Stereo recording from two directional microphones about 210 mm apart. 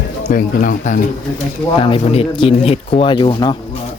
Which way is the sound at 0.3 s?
40° left (ahead or behind).